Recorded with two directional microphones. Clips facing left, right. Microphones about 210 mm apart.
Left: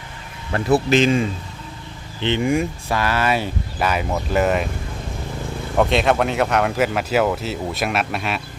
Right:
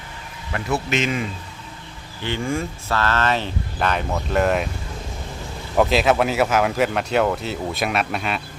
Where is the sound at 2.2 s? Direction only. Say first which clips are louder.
Left 5 dB; 20° left (ahead or behind); by 4.7 s centre (ahead or behind).